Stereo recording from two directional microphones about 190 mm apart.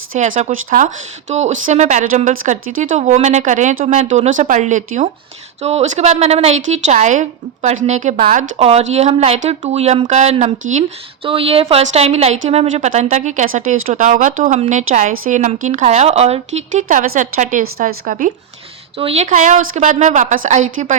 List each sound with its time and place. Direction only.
0.1 s a woman's voice: 40° right (ahead or behind)
18.9 s a woman's voice: 30° right (ahead or behind)